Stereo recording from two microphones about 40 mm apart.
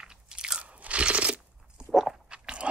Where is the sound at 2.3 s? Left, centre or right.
Right.